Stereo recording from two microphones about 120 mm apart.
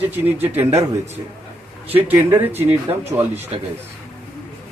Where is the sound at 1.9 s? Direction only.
15° right (ahead or behind).